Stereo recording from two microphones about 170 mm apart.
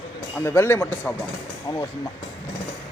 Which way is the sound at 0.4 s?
15° left (ahead or behind).